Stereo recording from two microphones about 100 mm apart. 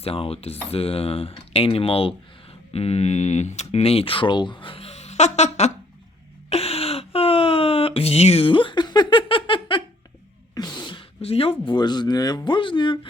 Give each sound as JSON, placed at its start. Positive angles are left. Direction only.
{"t": 0.0, "sound": "speech", "side_deg": 75}
{"t": 2.7, "sound": "mantra", "side_deg": 90}
{"t": 3.7, "sound": "speech", "side_deg": 85}
{"t": 6.5, "sound": "a sound", "side_deg": 85}
{"t": 10.5, "sound": "a sound", "side_deg": 40}
{"t": 11.2, "sound": "speech", "side_deg": 80}